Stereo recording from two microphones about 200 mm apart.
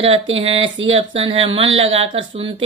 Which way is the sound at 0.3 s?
30° right (ahead or behind).